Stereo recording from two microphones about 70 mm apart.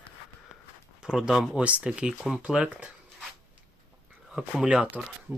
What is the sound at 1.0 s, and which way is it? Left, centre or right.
Speech, centre.